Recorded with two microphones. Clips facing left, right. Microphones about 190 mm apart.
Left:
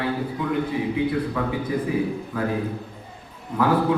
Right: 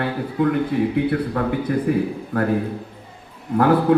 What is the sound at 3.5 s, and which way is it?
Speech, 60° right (ahead or behind).